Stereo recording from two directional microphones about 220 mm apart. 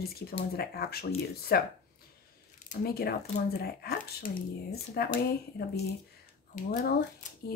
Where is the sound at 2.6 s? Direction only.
45° left (ahead or behind).